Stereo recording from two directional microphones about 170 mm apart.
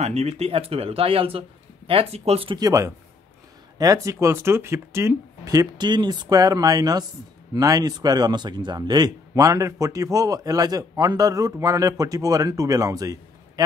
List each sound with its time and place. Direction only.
0.0 s speech: 40° right (ahead or behind); by 13.7 s 20° right (ahead or behind)